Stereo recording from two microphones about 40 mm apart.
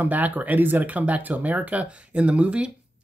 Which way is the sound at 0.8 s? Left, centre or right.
Right.